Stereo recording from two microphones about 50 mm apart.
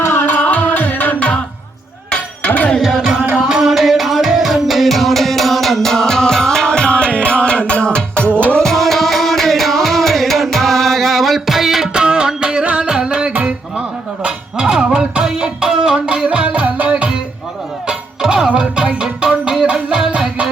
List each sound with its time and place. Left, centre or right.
0.0 s music: left
0.3 s music: left
2.1 s a sound: left
2.8 s music: centre; by 8.3 s left
8.5 s music: centre
13.3 s a sound: right
14.3 s music: centre
16.3 s music: right
17.8 s music: centre